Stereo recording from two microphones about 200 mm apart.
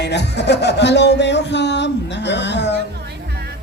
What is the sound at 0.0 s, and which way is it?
Music, 60° left (ahead or behind).